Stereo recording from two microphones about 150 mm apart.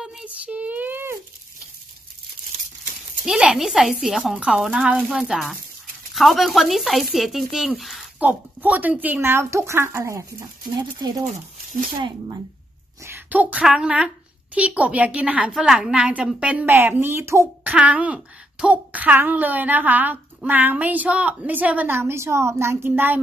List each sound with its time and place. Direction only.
0.0 s a sound: 5° right (ahead or behind)
3.3 s a child's voice: 5° right (ahead or behind); by 11.2 s 25° right (ahead or behind)
13.0 s a child's voice: 15° right (ahead or behind)